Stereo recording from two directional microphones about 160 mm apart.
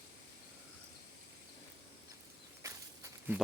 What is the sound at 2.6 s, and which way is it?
Walk, 20° right (ahead or behind).